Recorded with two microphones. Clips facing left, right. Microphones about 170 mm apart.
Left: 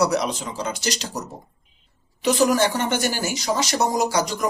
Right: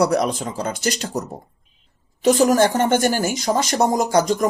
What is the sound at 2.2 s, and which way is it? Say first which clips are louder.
Speech: right 4 dB; 50° right (ahead or behind).